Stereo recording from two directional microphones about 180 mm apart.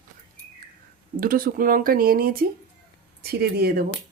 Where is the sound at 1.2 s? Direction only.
55° right (ahead or behind).